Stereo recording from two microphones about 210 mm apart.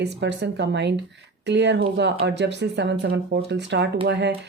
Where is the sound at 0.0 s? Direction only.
55° right (ahead or behind).